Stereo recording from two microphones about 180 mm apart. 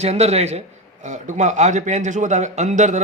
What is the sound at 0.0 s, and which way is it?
A man's voice, 35° right (ahead or behind).